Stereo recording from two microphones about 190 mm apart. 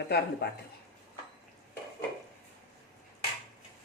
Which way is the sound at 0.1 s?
60° left (ahead or behind).